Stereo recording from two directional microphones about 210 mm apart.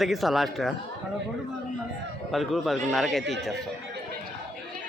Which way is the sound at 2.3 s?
Centre (ahead or behind).